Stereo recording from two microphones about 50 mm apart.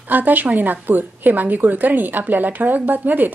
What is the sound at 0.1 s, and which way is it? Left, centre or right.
A woman's voice, right.